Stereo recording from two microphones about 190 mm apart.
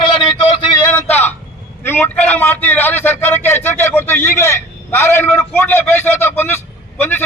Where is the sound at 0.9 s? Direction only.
10° left (ahead or behind).